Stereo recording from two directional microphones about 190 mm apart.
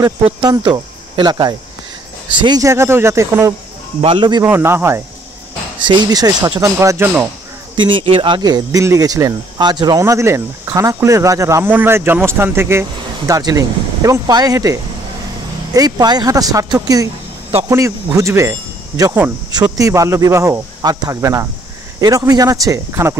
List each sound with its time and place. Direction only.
0.0 s speech: 20° right (ahead or behind)
4.0 s speech: 25° right (ahead or behind)
4.5 s speech: 10° right (ahead or behind)
5.8 s speech: 25° right (ahead or behind)